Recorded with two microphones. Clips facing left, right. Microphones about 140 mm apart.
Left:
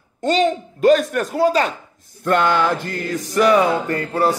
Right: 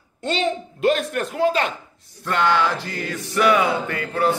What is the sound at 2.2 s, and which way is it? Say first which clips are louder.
Speech: left 3 dB; 50° left (ahead or behind).